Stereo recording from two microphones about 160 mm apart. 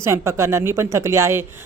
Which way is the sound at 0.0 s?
15° right (ahead or behind).